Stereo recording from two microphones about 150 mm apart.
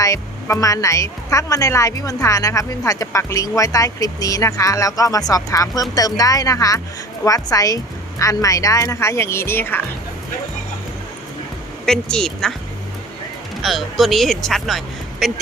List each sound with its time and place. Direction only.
0.0 s speech: 20° left (ahead or behind)
11.9 s a woman's voice: 5° left (ahead or behind)
13.6 s speech: centre (ahead or behind)